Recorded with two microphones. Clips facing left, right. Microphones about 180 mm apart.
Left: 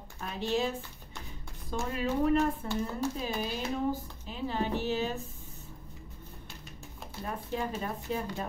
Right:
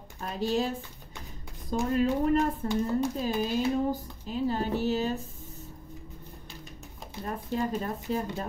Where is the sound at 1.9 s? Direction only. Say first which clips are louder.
Right 3 dB; 40° right (ahead or behind).